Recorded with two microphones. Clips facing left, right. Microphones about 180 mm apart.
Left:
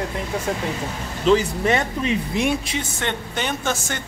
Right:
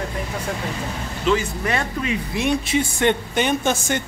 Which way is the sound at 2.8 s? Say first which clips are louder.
Right 7 dB; 15° right (ahead or behind).